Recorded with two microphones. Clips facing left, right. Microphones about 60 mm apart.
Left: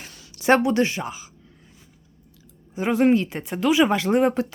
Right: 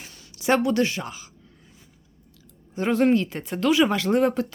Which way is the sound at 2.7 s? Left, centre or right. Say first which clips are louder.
Left 1 dB; centre.